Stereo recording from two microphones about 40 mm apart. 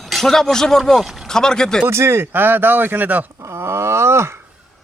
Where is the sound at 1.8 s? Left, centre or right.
Right.